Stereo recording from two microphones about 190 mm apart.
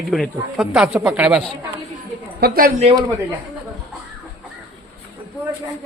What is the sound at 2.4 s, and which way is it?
Speech, 55° right (ahead or behind).